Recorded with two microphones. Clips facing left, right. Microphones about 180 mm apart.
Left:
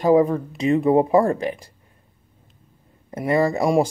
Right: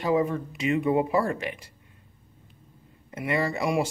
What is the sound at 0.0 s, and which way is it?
Speech, 35° left (ahead or behind).